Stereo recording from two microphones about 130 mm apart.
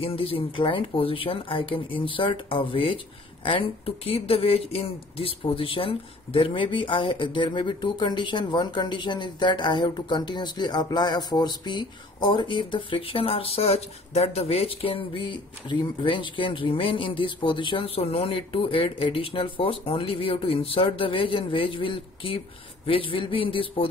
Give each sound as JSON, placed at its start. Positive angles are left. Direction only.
{"t": 0.0, "sound": "a man's voice", "side_deg": 45}